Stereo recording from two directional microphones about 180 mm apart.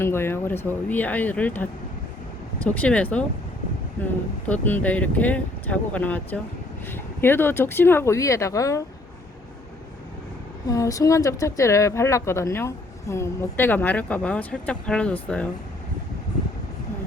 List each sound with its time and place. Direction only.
0.0 s speech: 15° left (ahead or behind)
10.7 s speech: 20° left (ahead or behind)